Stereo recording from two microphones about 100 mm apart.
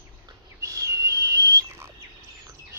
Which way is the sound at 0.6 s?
30° right (ahead or behind).